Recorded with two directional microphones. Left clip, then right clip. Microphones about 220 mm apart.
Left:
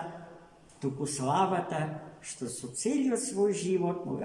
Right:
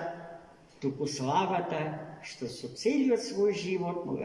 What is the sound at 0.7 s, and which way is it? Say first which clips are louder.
A man's voice: right 2 dB; 35° left (ahead or behind).